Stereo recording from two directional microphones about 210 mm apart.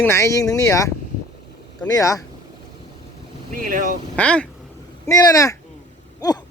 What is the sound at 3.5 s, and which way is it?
Speech, 40° right (ahead or behind).